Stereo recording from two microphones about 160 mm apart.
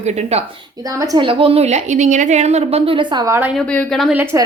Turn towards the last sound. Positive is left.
turn(degrees=-15)  # may be behind; listen again after turning